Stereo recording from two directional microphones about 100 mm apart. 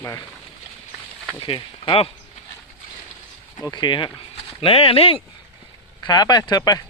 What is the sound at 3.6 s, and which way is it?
Speech, 45° left (ahead or behind).